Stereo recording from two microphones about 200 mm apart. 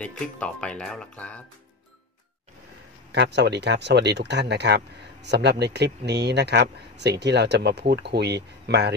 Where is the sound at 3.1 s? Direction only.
60° right (ahead or behind).